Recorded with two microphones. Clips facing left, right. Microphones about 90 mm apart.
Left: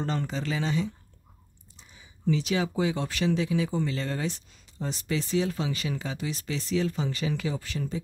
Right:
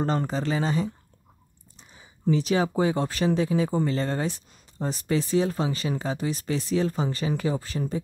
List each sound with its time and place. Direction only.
0.0 s speech: 40° right (ahead or behind)
2.0 s speech: 40° right (ahead or behind)